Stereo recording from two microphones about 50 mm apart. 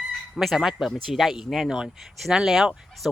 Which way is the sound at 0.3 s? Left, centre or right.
Centre.